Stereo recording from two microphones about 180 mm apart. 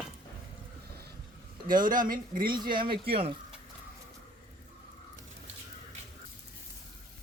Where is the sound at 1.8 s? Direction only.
50° right (ahead or behind).